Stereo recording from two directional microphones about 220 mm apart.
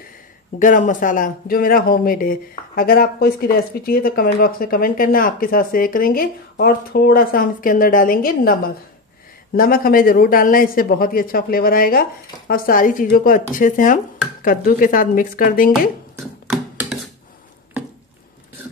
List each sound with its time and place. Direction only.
0.6 s speech: 35° left (ahead or behind)